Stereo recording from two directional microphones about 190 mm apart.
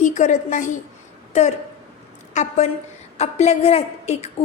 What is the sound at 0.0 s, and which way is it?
A woman's voice, 40° left (ahead or behind).